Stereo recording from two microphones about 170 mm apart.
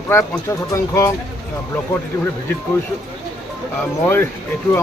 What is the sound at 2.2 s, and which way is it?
Speech, 15° left (ahead or behind).